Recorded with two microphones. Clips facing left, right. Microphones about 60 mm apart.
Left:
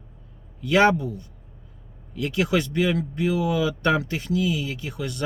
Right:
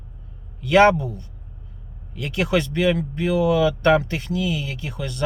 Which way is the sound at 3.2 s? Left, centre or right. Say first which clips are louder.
Right 5 dB; right.